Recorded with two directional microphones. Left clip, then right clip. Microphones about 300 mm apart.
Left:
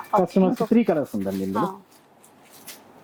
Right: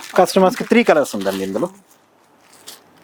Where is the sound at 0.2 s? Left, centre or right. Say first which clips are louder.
Right 10 dB; centre.